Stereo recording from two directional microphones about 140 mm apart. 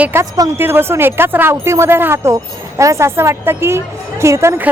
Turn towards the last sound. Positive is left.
turn(degrees=-15)  # may be behind; listen again after turning